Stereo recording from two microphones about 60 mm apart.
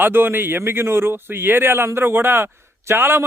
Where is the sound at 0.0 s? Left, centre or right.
Right.